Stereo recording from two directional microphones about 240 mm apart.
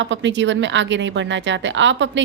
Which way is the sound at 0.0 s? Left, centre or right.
Right.